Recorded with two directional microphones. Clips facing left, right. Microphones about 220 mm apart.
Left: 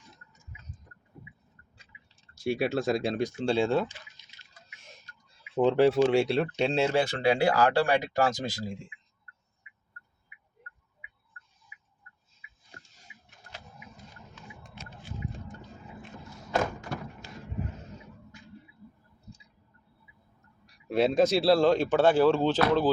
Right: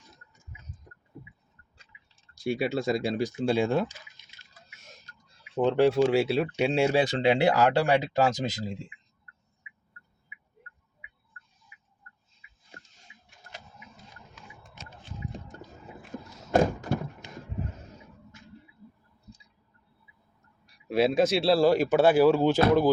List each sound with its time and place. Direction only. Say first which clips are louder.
2.3 s speech: even; 5° left (ahead or behind); by 3.8 s 15° right (ahead or behind)
5.6 s speech: even; centre (ahead or behind); by 8.8 s 20° right (ahead or behind)
16.6 s thunk: right 6 dB; 30° right (ahead or behind)
17.2 s a sound: right 2 dB; 20° right (ahead or behind)
20.7 s speech: right 1 dB; centre (ahead or behind)